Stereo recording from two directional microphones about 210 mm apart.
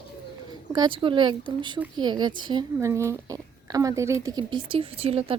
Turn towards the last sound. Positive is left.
turn(degrees=-30)  # may be behind; listen again after turning